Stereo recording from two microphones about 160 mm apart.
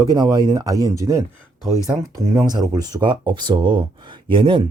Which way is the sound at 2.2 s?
20° right (ahead or behind).